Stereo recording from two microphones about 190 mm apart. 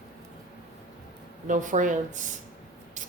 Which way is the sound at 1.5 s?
40° right (ahead or behind).